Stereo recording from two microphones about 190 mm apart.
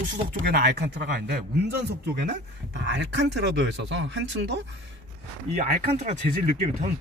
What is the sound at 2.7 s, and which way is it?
Speech, 65° right (ahead or behind).